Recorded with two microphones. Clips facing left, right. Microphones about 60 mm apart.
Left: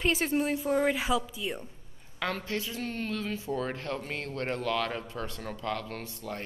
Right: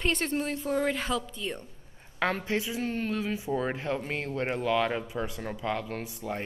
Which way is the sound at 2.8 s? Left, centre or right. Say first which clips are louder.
Right 3 dB; centre.